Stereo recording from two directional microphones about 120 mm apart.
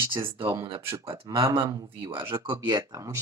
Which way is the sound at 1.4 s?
25° right (ahead or behind).